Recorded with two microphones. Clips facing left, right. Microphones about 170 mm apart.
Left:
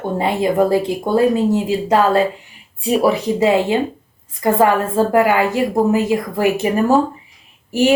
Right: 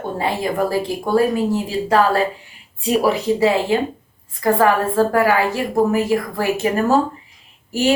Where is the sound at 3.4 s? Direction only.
20° left (ahead or behind).